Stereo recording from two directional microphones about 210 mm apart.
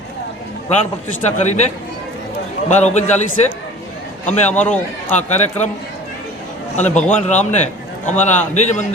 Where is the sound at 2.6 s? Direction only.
35° left (ahead or behind).